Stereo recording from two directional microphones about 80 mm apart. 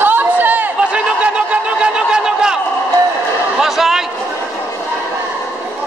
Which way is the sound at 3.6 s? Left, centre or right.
Centre.